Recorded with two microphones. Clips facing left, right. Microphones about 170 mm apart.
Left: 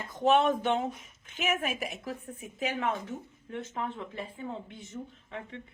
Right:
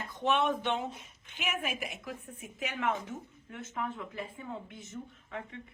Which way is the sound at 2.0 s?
35° left (ahead or behind).